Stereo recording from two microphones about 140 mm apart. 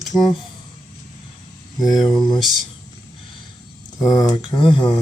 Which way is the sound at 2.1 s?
5° left (ahead or behind).